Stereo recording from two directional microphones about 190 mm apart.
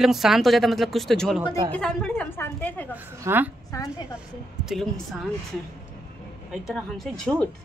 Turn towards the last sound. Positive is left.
turn(degrees=5)  # may be behind; listen again after turning